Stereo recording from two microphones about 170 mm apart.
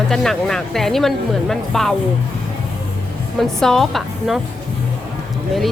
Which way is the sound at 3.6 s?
Centre (ahead or behind).